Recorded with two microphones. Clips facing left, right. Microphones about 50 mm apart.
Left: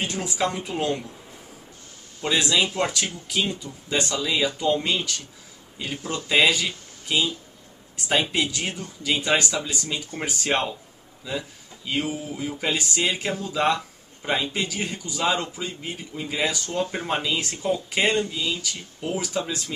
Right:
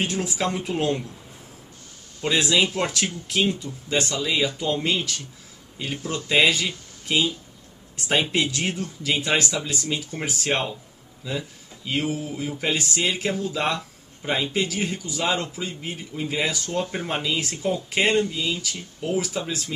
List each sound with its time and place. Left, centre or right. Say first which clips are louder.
0.0 s speech: right 1 dB; centre
2.2 s speech: right 1 dB; centre
7.9 s speech: right 1 dB; centre
11.9 s speech: right 1 dB; centre